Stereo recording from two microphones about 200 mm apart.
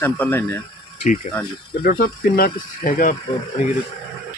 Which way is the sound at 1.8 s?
50° left (ahead or behind).